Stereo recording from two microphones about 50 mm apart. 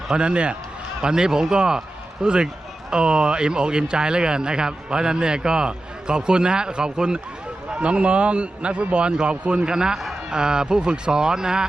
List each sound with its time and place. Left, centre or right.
0.2 s a man's voice: right